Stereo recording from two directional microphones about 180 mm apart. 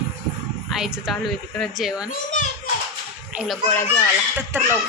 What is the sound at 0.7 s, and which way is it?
A woman's voice, centre (ahead or behind).